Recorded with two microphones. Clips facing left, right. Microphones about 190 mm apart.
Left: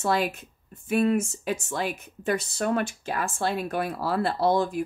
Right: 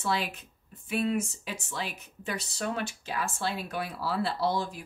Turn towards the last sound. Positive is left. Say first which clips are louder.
# left 6 dB
turn(degrees=50)  # may be behind; listen again after turning